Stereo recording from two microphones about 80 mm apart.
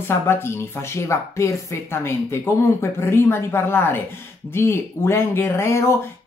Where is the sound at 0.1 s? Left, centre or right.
Left.